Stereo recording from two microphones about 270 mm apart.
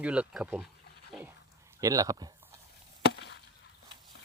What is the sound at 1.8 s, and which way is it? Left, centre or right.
Speech, centre.